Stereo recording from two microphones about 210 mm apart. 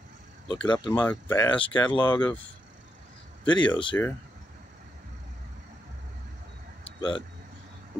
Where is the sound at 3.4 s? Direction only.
20° left (ahead or behind).